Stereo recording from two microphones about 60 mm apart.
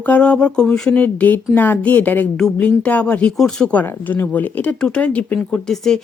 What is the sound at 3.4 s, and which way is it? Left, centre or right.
Speech, centre.